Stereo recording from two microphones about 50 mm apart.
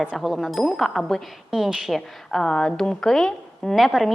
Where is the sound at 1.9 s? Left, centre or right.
Centre.